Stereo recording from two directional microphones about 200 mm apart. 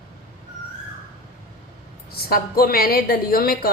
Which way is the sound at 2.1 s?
50° left (ahead or behind).